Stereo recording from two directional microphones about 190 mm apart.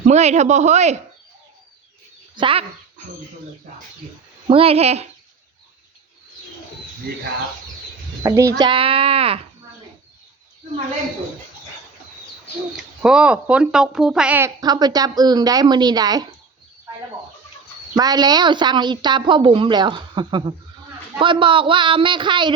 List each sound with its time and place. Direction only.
0.0 s speech: 35° right (ahead or behind)
2.3 s speech: 25° right (ahead or behind)
4.4 s speech: 30° right (ahead or behind)
8.2 s speech: 15° right (ahead or behind)
12.7 s speech: 5° right (ahead or behind); by 16.3 s 20° right (ahead or behind)
17.9 s speech: 20° right (ahead or behind)